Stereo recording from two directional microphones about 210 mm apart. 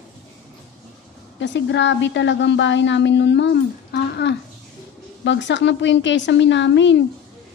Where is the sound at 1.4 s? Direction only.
60° left (ahead or behind).